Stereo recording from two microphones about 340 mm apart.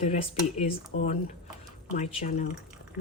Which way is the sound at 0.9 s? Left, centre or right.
Left.